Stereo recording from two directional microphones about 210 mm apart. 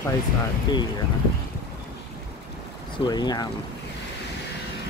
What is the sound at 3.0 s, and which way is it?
Speech, 20° left (ahead or behind).